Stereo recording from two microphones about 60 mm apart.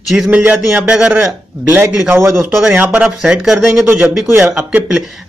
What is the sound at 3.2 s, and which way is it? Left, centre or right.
Speech, centre.